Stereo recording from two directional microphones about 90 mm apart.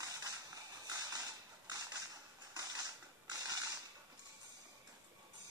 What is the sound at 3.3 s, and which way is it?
Mechanisms, 45° right (ahead or behind).